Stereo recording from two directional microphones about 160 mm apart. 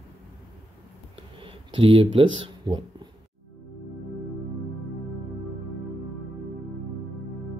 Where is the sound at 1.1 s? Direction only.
35° right (ahead or behind).